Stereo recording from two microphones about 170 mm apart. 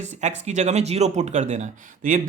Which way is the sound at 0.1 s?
45° right (ahead or behind).